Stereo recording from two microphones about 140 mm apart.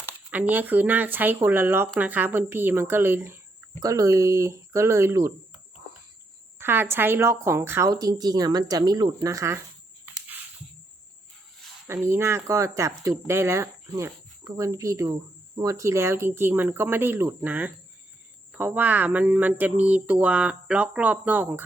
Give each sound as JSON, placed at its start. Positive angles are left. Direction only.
{"t": 0.0, "sound": "speech", "side_deg": -10}
{"t": 6.6, "sound": "speech", "side_deg": -15}
{"t": 11.9, "sound": "speech", "side_deg": -20}